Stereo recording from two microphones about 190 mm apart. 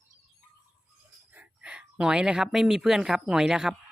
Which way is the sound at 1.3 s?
5° right (ahead or behind).